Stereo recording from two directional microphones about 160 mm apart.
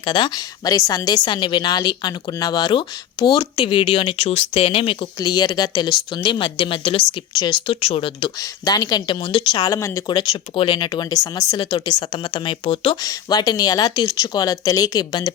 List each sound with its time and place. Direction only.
0.0 s a woman's voice: 30° left (ahead or behind)